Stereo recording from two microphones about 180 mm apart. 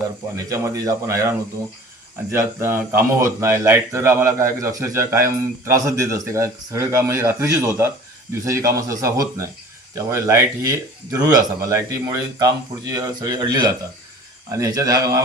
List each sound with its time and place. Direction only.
0.5 s speech: 20° right (ahead or behind)